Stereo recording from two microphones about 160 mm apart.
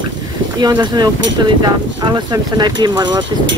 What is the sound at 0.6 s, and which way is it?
Speech, 25° right (ahead or behind).